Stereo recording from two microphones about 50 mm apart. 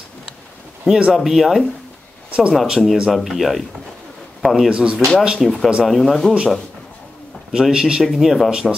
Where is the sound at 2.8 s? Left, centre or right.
Centre.